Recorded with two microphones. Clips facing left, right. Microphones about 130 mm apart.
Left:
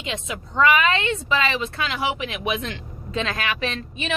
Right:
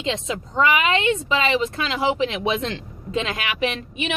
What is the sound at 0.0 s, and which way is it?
Speech, 25° right (ahead or behind).